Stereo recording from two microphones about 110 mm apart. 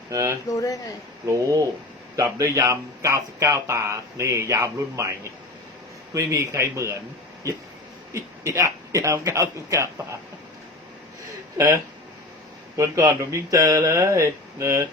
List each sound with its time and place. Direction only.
0.1 s speech: 30° right (ahead or behind)
0.5 s speech: 30° left (ahead or behind)
1.2 s speech: 30° right (ahead or behind)
8.1 s a man's voice: 25° right (ahead or behind)
11.5 s speech: 30° right (ahead or behind)